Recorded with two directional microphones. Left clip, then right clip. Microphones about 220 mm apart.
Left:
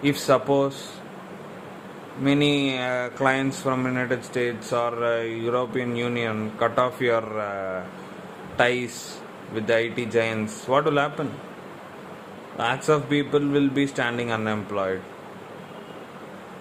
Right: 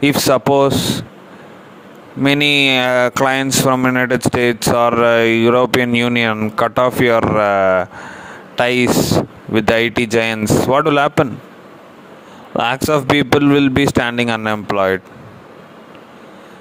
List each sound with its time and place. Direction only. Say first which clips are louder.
0.0 s speech: right 8 dB; 45° right (ahead or behind)
2.2 s speech: right 9 dB; 45° right (ahead or behind)
12.5 s speech: right 7 dB; 45° right (ahead or behind)